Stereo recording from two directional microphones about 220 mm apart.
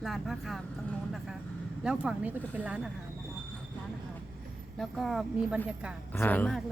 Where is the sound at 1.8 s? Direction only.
5° right (ahead or behind).